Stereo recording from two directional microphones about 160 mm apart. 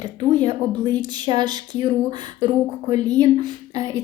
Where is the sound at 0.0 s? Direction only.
25° right (ahead or behind).